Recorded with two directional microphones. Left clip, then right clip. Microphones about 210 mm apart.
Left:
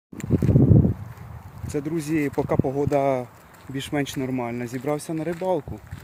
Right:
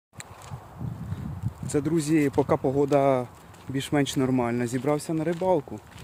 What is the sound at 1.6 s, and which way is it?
Speech, 10° right (ahead or behind).